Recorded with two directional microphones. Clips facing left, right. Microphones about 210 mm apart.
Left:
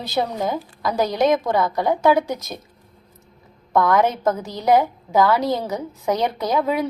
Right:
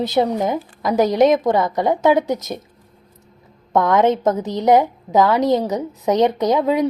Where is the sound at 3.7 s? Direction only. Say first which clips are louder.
Right 3 dB; 20° right (ahead or behind).